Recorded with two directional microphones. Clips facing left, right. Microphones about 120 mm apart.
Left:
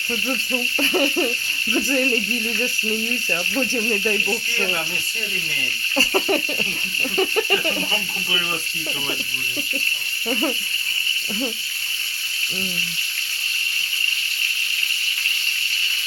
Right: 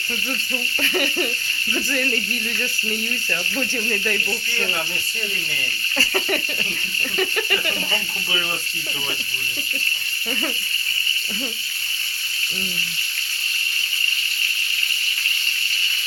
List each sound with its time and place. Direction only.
0.3 s speech: 25° left (ahead or behind)
6.0 s speech: 30° left (ahead or behind)